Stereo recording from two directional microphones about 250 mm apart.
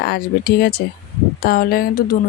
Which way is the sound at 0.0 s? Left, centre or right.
Left.